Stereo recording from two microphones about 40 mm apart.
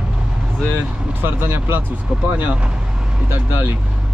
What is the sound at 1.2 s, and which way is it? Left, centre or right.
Speech, right.